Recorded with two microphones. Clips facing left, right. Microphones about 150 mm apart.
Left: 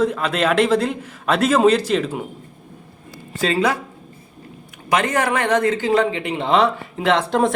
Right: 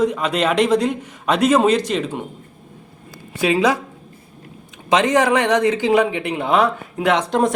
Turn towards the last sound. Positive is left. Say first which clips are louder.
# even
turn(degrees=0)  # may be behind; listen again after turning